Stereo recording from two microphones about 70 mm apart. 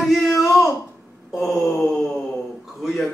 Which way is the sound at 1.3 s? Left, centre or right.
Left.